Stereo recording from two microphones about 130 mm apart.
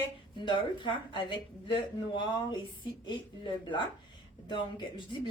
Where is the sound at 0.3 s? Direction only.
40° left (ahead or behind).